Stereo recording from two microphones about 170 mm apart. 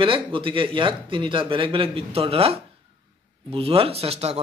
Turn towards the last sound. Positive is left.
turn(degrees=-35)  # may be behind; listen again after turning